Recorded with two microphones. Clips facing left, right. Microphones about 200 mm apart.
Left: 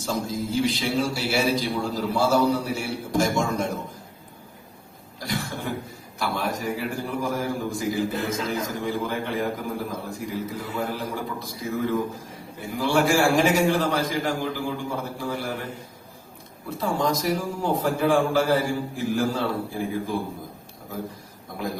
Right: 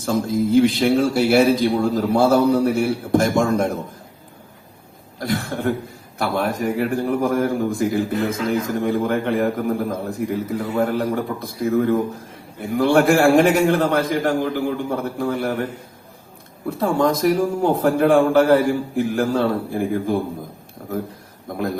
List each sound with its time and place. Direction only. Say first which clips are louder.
0.0 s a man's voice: right 8 dB; 55° right (ahead or behind)
5.2 s a man's voice: right 8 dB; 55° right (ahead or behind)
16.6 s a man's voice: right 6 dB; 55° right (ahead or behind)
21.5 s a man's voice: right 8 dB; 60° right (ahead or behind)